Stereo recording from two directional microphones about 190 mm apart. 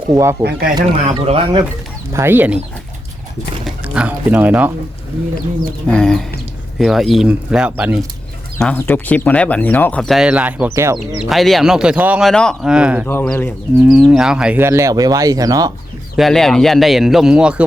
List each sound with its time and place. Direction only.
0.1 s speech: 15° right (ahead or behind)
0.4 s speech: 55° right (ahead or behind)
1.2 s speech: 30° right (ahead or behind)
2.1 s speech: 10° right (ahead or behind)
3.6 s music: 5° right (ahead or behind)
5.9 s speech: 5° left (ahead or behind)
8.5 s speech: 5° left (ahead or behind)
13.1 s speech: 10° left (ahead or behind); by 15.7 s 20° right (ahead or behind)
16.1 s speech: centre (ahead or behind)